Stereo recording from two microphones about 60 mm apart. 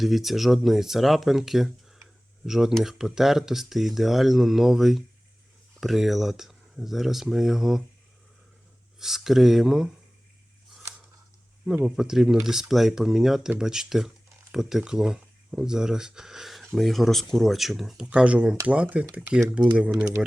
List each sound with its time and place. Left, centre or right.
0.0 s speech: centre
9.0 s speech: centre
11.9 s speech: centre
18.0 s speech: centre